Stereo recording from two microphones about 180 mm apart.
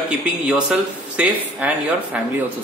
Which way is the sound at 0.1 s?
5° right (ahead or behind).